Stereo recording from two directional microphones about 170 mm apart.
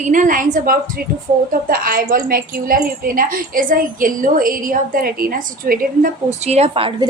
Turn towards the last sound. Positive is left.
turn(degrees=-35)  # may be behind; listen again after turning